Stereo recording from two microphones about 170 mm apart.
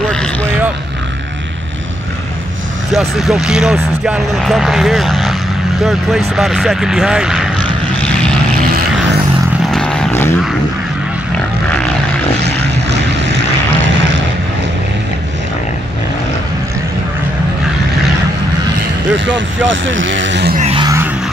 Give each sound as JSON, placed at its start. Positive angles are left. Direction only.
{"t": 0.1, "sound": "vehicle", "side_deg": 5}
{"t": 2.9, "sound": "speech", "side_deg": 0}
{"t": 9.7, "sound": "vehicle", "side_deg": 5}
{"t": 12.4, "sound": "vehicle", "side_deg": -90}
{"t": 19.0, "sound": "speech", "side_deg": -90}